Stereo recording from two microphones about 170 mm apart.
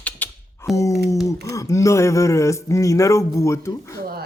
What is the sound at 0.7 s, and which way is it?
Speech, 20° left (ahead or behind).